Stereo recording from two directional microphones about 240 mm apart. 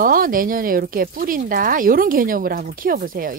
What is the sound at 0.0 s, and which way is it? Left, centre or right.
Speech, right.